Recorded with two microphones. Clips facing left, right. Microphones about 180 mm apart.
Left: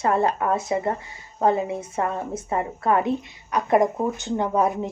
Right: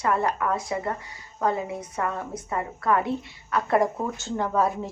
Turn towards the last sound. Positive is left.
turn(degrees=20)  # may be behind; listen again after turning